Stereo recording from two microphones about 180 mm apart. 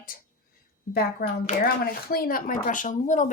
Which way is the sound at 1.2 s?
55° left (ahead or behind).